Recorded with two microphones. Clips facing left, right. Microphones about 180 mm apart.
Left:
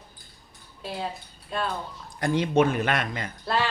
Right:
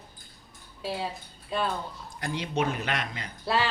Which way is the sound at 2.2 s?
50° left (ahead or behind).